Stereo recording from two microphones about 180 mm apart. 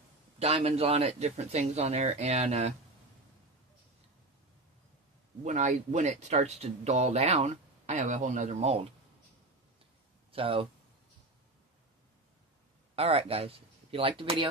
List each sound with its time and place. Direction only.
0.4 s speech: 35° right (ahead or behind)
5.4 s speech: 40° right (ahead or behind)
10.3 s speech: 30° right (ahead or behind)
12.9 s speech: 35° right (ahead or behind)